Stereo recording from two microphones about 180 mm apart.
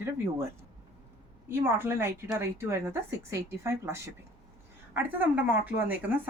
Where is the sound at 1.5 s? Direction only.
15° right (ahead or behind).